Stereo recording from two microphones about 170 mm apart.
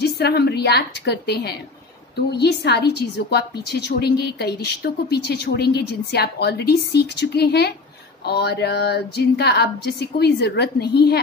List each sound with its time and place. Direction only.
0.0 s a woman's voice: 70° left (ahead or behind)